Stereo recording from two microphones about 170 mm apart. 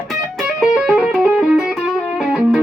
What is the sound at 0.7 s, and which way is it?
Music, 5° right (ahead or behind).